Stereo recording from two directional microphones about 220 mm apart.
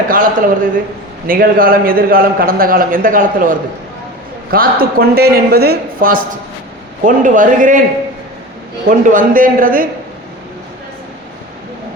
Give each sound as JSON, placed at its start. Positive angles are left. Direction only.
{"t": 0.1, "sound": "a man's voice", "side_deg": -40}
{"t": 8.9, "sound": "a man's voice", "side_deg": -35}